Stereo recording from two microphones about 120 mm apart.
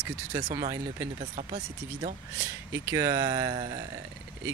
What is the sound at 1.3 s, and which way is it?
Speech, 70° right (ahead or behind).